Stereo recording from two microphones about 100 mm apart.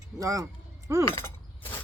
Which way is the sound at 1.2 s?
20° left (ahead or behind).